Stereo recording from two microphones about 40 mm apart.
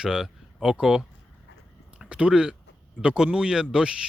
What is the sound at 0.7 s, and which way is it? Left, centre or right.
Speech, centre.